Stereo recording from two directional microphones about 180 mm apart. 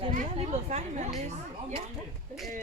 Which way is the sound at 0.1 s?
35° right (ahead or behind).